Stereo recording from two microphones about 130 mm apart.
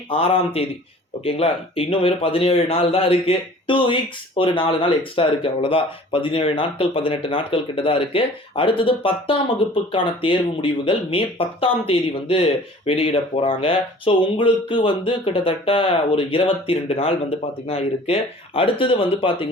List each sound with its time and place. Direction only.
0.1 s speech: 45° left (ahead or behind)